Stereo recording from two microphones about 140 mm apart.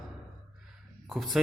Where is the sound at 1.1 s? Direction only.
Centre (ahead or behind).